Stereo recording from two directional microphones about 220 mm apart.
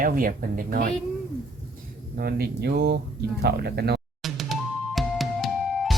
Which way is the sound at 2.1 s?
45° right (ahead or behind).